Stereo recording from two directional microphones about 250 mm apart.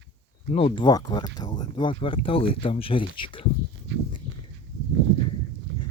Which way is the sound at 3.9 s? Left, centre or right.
Right.